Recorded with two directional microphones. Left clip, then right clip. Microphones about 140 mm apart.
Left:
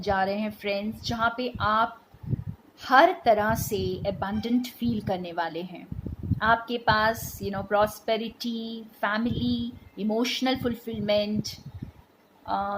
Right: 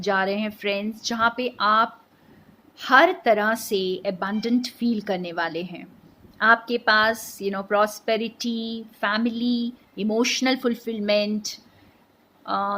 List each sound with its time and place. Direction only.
0.0 s a woman's voice: 45° right (ahead or behind)
12.5 s a woman's voice: 50° right (ahead or behind)